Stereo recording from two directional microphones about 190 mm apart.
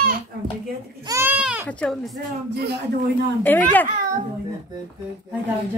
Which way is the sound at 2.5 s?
60° right (ahead or behind).